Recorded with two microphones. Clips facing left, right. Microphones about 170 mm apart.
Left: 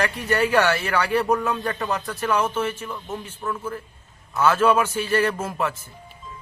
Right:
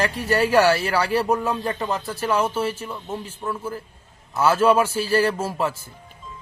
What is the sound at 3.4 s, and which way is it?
Speech, 15° right (ahead or behind).